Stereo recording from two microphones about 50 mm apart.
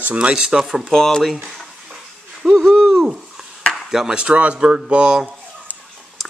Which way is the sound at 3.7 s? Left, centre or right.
Centre.